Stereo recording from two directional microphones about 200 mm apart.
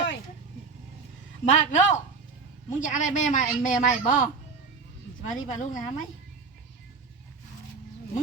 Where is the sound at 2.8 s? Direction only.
40° left (ahead or behind).